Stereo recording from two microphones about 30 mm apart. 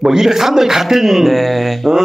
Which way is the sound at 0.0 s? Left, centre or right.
Centre.